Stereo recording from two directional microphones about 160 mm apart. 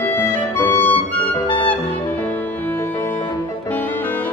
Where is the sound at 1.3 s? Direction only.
25° left (ahead or behind).